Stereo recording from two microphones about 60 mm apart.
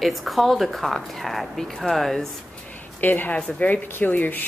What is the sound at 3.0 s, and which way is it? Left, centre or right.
A woman's voice, left.